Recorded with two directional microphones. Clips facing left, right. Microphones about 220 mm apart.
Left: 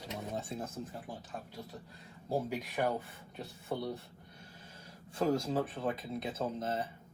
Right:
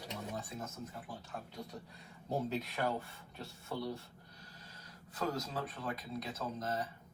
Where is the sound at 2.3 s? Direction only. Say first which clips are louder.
Left 2 dB; 15° left (ahead or behind).